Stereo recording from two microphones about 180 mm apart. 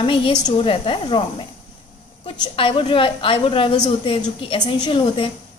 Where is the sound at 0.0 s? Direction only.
30° left (ahead or behind).